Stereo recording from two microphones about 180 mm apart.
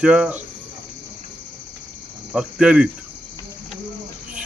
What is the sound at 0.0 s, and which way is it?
Speech, 5° right (ahead or behind).